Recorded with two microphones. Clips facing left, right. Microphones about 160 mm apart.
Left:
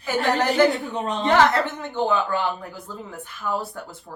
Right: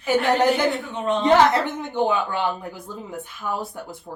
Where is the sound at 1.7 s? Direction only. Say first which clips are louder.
Right 1 dB; 20° right (ahead or behind).